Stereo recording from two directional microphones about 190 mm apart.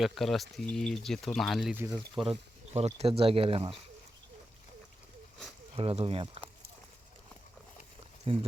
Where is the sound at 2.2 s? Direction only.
30° right (ahead or behind).